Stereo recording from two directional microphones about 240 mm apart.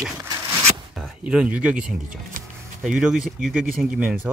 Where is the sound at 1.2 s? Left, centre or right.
Centre.